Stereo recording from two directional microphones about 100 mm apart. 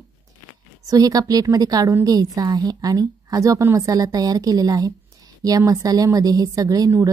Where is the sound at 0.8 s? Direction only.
35° right (ahead or behind).